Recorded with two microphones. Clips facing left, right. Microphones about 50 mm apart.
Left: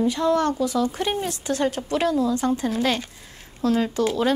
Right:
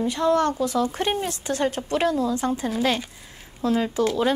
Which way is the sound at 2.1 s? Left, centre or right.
Right.